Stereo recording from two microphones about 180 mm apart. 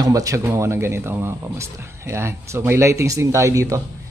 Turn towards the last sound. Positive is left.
turn(degrees=-15)  # may be behind; listen again after turning